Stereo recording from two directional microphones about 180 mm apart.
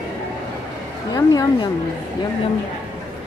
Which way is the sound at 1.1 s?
20° left (ahead or behind).